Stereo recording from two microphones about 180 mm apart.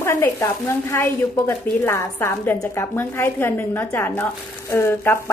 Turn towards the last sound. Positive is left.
turn(degrees=15)  # may be behind; listen again after turning